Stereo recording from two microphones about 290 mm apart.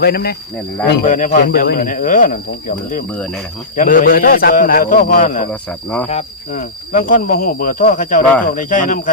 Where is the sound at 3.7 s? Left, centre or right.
Left.